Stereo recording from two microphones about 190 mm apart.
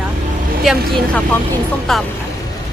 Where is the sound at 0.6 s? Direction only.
Centre (ahead or behind).